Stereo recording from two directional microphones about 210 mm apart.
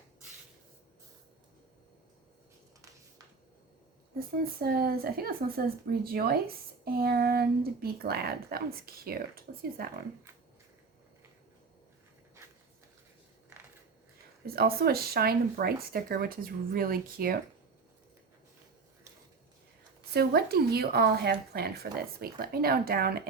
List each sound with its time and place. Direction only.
4.6 s speech: 45° right (ahead or behind)
14.4 s speech: 45° right (ahead or behind)
20.1 s speech: 50° right (ahead or behind)